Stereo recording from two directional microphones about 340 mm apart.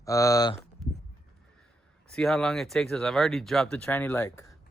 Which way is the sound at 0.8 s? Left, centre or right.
Centre.